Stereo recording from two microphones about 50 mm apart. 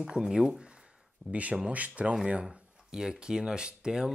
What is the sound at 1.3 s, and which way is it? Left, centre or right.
Speech, right.